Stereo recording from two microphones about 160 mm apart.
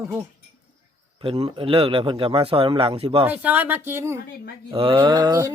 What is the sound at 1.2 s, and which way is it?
A man's voice, 35° right (ahead or behind).